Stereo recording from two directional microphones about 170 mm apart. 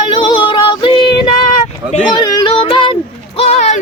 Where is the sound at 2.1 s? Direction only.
25° left (ahead or behind).